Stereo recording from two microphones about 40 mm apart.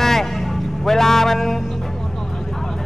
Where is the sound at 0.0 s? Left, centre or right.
Centre.